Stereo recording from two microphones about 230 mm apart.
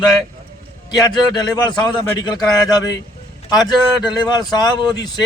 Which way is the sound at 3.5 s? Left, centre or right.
Centre.